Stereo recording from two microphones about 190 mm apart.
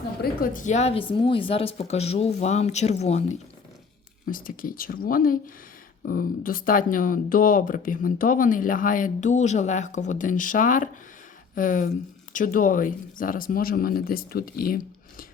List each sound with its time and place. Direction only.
0.2 s speech: 50° left (ahead or behind)
4.3 s speech: 45° left (ahead or behind)